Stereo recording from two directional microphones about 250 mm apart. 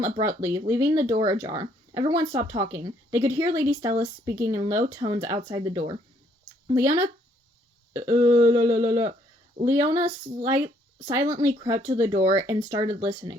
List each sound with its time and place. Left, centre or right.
0.0 s a woman's voice: centre